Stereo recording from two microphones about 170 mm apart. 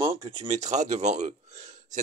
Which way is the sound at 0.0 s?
30° right (ahead or behind).